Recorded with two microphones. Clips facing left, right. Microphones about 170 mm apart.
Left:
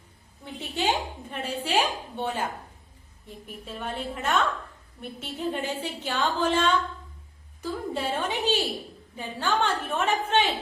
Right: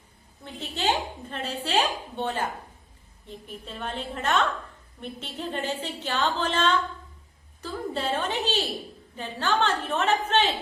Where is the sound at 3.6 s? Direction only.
10° left (ahead or behind).